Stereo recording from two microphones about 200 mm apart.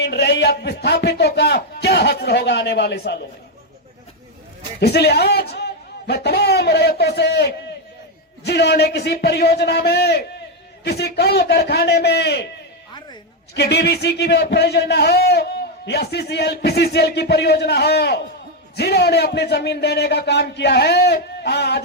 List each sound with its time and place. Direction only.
0.0 s a man's voice: 55° left (ahead or behind)
4.8 s a man's voice: 55° left (ahead or behind)
13.5 s a man's voice: 55° left (ahead or behind)